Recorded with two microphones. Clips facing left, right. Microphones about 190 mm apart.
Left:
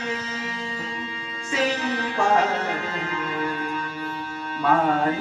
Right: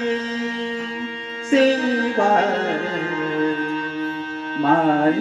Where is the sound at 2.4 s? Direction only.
60° right (ahead or behind).